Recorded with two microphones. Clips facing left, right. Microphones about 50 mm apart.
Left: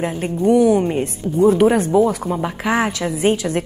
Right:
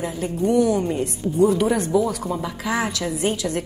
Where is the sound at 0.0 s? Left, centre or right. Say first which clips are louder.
Left 4 dB; left.